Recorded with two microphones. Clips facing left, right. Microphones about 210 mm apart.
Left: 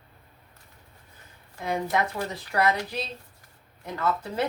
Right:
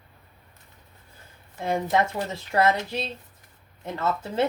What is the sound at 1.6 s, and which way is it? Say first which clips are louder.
Speech: right 3 dB; 25° right (ahead or behind).